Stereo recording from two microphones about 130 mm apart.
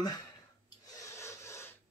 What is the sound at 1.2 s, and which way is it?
Printer, 20° left (ahead or behind).